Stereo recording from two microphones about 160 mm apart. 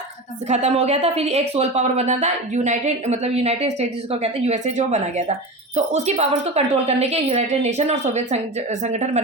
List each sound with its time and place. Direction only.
0.4 s speech: 45° right (ahead or behind)